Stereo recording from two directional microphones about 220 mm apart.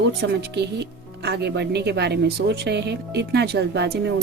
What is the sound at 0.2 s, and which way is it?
Speech, 50° right (ahead or behind).